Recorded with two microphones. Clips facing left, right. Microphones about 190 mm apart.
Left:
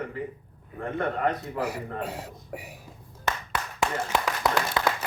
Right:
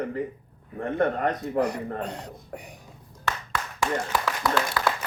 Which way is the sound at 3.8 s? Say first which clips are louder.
Right 1 dB; 20° left (ahead or behind).